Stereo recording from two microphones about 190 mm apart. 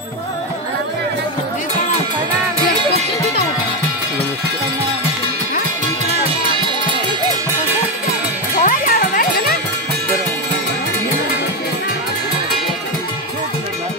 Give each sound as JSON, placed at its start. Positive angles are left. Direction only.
{"t": 8.5, "sound": "music", "side_deg": 50}